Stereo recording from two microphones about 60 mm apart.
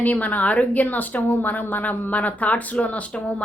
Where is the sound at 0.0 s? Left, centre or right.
Left.